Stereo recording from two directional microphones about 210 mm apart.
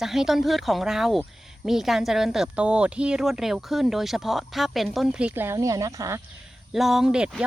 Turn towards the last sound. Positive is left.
turn(degrees=-5)  # may be behind; listen again after turning